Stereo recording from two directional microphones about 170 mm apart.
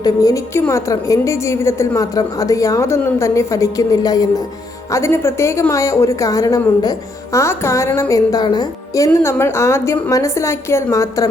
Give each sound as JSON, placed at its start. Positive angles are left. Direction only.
{"t": 0.0, "sound": "a woman's voice", "side_deg": 20}